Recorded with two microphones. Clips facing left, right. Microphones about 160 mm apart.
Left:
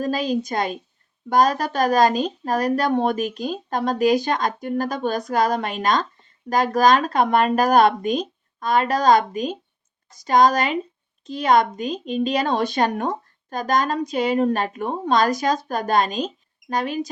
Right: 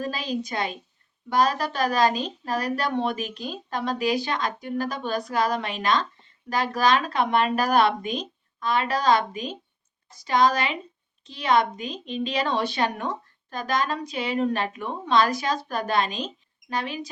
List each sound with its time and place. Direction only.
0.0 s a woman's voice: 45° left (ahead or behind)